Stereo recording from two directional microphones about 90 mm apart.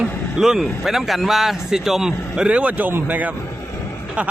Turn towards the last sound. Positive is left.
turn(degrees=-20)  # may be behind; listen again after turning